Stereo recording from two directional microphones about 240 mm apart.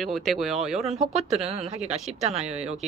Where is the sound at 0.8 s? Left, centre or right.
Right.